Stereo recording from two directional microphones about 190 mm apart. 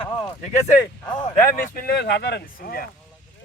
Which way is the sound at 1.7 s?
55° left (ahead or behind).